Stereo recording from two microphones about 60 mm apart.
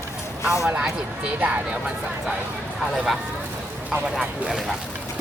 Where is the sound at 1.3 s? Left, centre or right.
Right.